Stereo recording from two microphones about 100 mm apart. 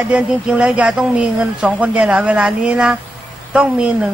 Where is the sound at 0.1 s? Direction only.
10° right (ahead or behind).